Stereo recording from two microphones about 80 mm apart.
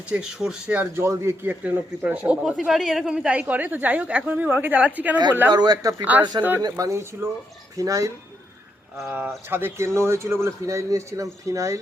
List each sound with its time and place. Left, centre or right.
0.1 s speech: centre
0.9 s a woman's voice: right; by 2.4 s centre
2.4 s a woman's voice: centre
5.5 s a man's voice: right
7.8 s speech: right
9.0 s a man's voice: right